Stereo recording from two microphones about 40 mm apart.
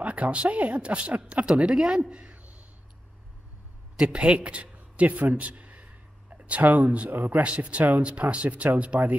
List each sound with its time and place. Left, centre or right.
0.0 s speech: right
1.3 s speech: right
2.3 s a sound: right
3.9 s speech: centre
4.3 s a man's voice: right
6.3 s a sound: right
6.8 s speech: right